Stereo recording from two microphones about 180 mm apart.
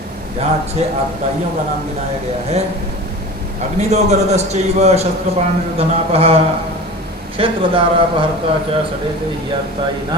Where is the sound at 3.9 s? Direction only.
40° right (ahead or behind).